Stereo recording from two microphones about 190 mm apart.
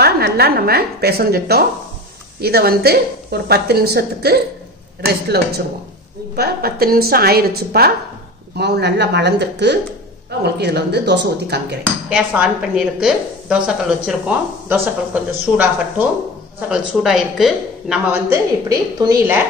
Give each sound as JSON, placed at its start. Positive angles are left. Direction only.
{"t": 0.0, "sound": "a woman's voice", "side_deg": -55}
{"t": 12.1, "sound": "a woman's voice", "side_deg": -5}
{"t": 18.3, "sound": "a woman's voice", "side_deg": -20}